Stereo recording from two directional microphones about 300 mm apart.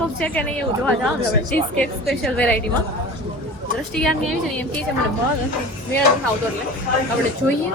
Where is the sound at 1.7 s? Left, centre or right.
Centre.